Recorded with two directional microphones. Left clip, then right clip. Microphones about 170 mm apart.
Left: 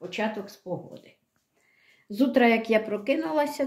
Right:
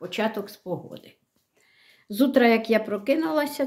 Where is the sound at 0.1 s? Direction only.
35° right (ahead or behind).